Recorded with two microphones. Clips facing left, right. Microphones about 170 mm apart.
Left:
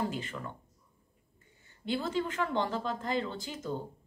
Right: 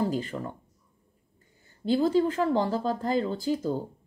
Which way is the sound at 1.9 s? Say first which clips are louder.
Right 9 dB; 35° right (ahead or behind).